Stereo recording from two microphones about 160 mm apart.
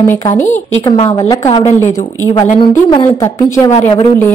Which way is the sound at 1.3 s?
20° left (ahead or behind).